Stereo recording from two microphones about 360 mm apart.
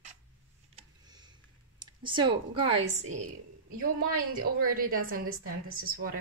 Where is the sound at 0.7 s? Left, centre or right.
Centre.